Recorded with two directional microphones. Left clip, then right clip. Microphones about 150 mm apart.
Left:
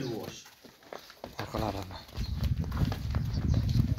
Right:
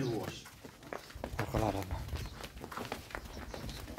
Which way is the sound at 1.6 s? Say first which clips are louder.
Even; 5° right (ahead or behind).